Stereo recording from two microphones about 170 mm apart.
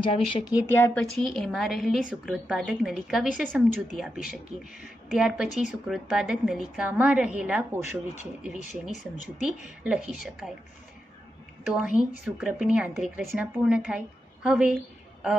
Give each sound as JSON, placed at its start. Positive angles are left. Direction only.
{"t": 0.0, "sound": "speech", "side_deg": 30}
{"t": 0.7, "sound": "speech", "side_deg": 15}
{"t": 1.0, "sound": "speech", "side_deg": 0}
{"t": 11.7, "sound": "speech", "side_deg": -5}